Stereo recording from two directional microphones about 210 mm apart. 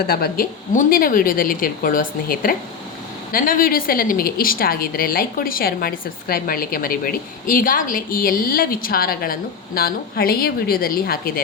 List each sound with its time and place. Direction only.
0.0 s a woman's voice: 45° left (ahead or behind)